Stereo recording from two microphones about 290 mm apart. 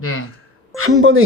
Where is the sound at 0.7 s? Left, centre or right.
Right.